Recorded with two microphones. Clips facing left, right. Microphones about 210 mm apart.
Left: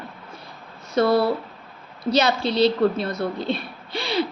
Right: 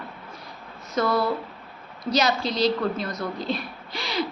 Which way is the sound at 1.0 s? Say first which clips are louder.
Left 5 dB; 30° left (ahead or behind).